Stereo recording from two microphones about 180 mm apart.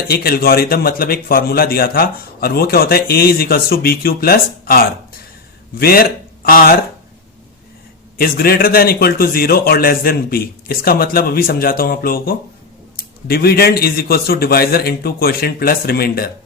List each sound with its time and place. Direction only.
0.1 s a man's voice: 55° left (ahead or behind)
8.2 s a man's voice: 55° left (ahead or behind)